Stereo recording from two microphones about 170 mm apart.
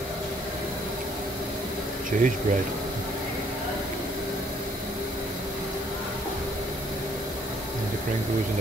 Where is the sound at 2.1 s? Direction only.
50° right (ahead or behind).